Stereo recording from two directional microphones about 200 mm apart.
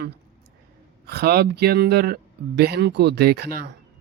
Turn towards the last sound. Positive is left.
turn(degrees=-55)  # may be behind; listen again after turning